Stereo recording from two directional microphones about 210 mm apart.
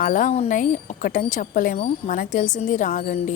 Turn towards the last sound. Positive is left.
turn(degrees=40)  # may be behind; listen again after turning